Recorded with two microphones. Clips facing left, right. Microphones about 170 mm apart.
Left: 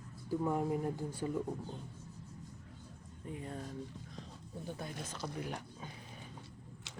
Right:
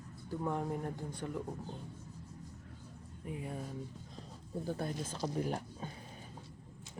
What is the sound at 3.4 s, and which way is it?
Speech, 10° right (ahead or behind).